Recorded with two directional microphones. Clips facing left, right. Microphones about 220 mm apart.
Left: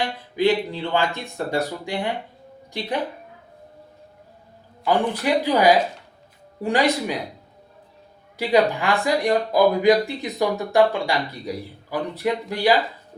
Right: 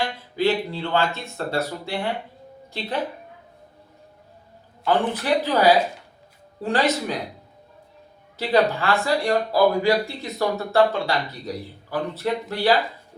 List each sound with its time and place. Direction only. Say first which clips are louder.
0.0 s speech: left 2 dB; 15° left (ahead or behind)
4.9 s speech: left 1 dB; 10° left (ahead or behind)
8.4 s speech: left 1 dB; 15° left (ahead or behind)